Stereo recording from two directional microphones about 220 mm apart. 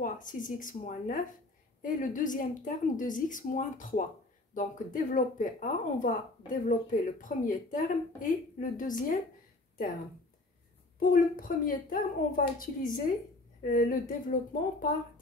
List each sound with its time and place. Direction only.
0.0 s speech: 35° left (ahead or behind)
11.0 s speech: 40° left (ahead or behind)